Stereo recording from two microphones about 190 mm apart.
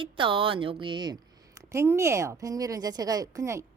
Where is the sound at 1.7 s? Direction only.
15° right (ahead or behind).